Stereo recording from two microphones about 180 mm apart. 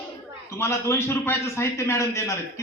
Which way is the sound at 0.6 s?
15° left (ahead or behind).